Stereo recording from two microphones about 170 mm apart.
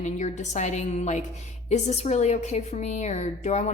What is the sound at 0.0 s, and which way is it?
A woman's voice, 45° left (ahead or behind).